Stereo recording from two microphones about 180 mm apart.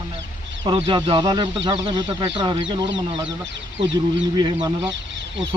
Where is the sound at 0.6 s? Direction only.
30° right (ahead or behind).